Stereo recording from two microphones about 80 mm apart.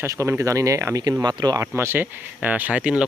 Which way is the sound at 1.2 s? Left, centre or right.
Right.